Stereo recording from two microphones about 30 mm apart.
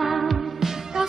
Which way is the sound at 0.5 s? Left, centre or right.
Centre.